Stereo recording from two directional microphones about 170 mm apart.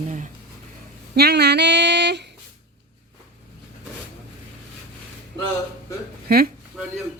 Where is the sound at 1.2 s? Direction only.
75° right (ahead or behind); by 2.3 s 90° right.